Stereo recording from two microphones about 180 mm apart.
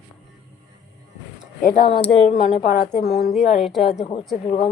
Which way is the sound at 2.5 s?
50° left (ahead or behind).